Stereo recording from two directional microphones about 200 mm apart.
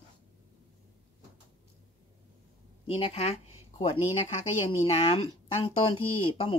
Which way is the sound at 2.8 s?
25° left (ahead or behind).